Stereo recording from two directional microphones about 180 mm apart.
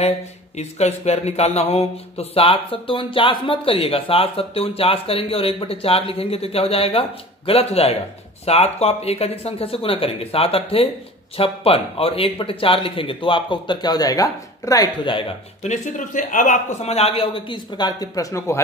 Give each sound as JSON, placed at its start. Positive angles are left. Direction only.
{"t": 0.6, "sound": "speech", "side_deg": 35}
{"t": 15.6, "sound": "speech", "side_deg": 40}